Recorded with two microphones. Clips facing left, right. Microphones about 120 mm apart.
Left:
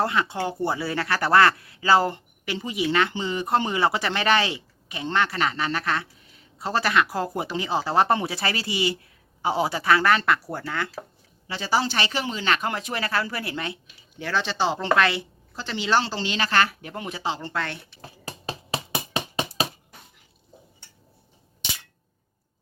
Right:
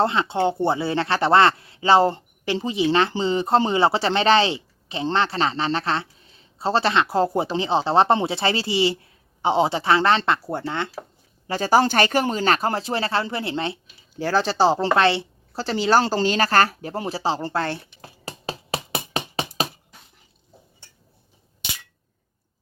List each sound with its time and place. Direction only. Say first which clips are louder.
0.0 s speech: right 4 dB; 25° right (ahead or behind)
11.4 s a woman's voice: right 7 dB; 45° right (ahead or behind)